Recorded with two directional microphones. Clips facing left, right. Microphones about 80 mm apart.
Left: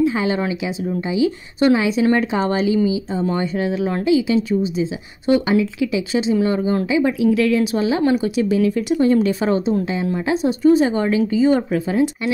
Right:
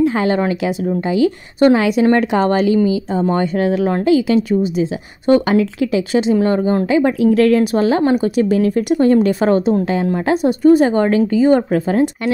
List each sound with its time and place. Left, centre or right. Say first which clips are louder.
0.0 s a woman's voice: right 3 dB; right